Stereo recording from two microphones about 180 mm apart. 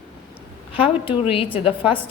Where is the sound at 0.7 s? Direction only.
30° left (ahead or behind).